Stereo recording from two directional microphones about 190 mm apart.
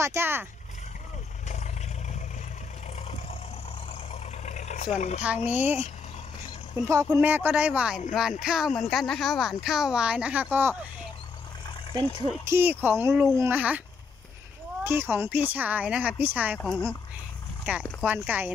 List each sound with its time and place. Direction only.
0.0 s speech: 15° right (ahead or behind)
4.1 s vehicle: 35° left (ahead or behind)
4.9 s speech: 35° left (ahead or behind)
5.6 s speech: 10° right (ahead or behind)
7.1 s speech: 10° right (ahead or behind)
11.9 s speech: 25° right (ahead or behind)
12.5 s speech: 10° right (ahead or behind)
17.6 s speech: 5° right (ahead or behind)